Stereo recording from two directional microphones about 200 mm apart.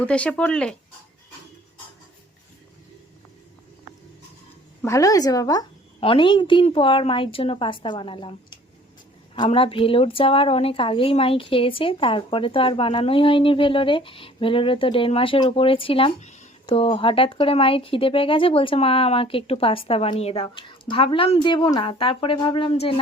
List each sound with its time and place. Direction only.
0.0 s speech: 5° left (ahead or behind)
4.8 s a woman's voice: 15° left (ahead or behind)